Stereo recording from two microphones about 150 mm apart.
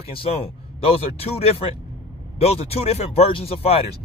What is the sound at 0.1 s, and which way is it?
Speech, 40° left (ahead or behind).